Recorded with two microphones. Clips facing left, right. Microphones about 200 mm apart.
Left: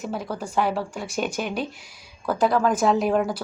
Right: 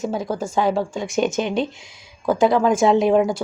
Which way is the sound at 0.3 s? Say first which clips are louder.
Right 3 dB; 25° right (ahead or behind).